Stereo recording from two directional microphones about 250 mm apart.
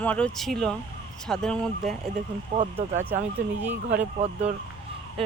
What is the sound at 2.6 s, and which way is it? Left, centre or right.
Speech, right.